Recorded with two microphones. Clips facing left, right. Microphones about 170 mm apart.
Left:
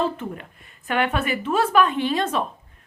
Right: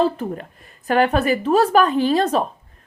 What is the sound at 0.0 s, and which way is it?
Speech, 35° right (ahead or behind).